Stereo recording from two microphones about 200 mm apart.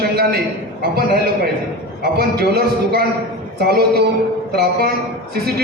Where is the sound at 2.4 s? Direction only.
50° right (ahead or behind).